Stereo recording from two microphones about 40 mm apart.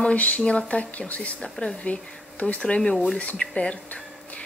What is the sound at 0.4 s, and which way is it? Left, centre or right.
Speech, left.